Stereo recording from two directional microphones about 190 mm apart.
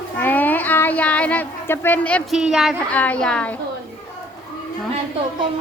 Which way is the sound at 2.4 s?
Centre (ahead or behind).